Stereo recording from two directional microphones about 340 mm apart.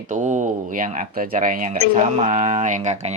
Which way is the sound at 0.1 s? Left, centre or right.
Right.